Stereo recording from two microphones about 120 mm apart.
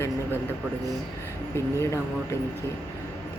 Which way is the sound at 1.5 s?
25° left (ahead or behind).